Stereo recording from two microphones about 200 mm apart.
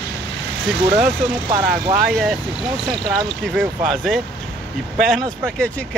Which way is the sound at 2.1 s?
Centre (ahead or behind).